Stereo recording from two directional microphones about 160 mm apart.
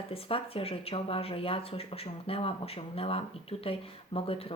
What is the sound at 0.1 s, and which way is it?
Speech, 35° left (ahead or behind).